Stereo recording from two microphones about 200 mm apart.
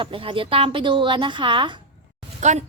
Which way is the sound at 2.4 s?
35° right (ahead or behind).